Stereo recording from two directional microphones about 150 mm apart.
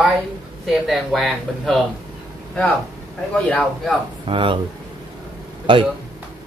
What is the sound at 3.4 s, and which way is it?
Speech, 5° left (ahead or behind).